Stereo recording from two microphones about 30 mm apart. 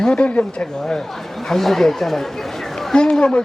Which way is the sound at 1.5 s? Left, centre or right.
Centre.